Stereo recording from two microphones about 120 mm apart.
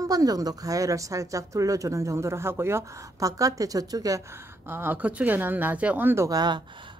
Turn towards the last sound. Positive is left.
turn(degrees=-35)  # may be behind; listen again after turning